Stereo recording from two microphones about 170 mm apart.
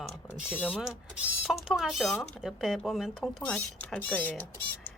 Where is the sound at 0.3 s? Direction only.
10° left (ahead or behind).